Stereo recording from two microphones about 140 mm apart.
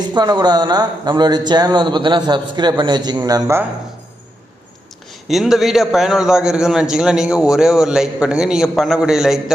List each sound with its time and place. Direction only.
0.1 s a man's voice: 30° right (ahead or behind)
5.3 s a man's voice: centre (ahead or behind)